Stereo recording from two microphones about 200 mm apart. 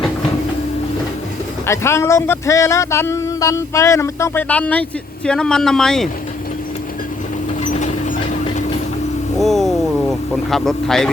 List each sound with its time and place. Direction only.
1.6 s speech: 15° left (ahead or behind)
7.6 s train: 35° left (ahead or behind)
9.4 s a sound: centre (ahead or behind)
10.5 s a man's voice: centre (ahead or behind)